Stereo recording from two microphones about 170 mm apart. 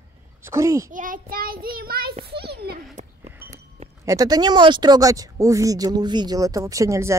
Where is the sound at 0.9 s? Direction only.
50° right (ahead or behind).